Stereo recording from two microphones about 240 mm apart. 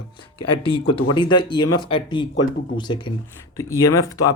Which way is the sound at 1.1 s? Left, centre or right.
Centre.